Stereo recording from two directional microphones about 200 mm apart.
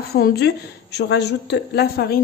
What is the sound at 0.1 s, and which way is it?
A woman's voice, 55° left (ahead or behind).